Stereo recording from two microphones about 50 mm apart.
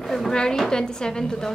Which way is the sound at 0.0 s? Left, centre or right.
Centre.